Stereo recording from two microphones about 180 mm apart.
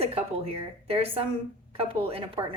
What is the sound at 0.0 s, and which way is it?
A woman's voice, 35° right (ahead or behind).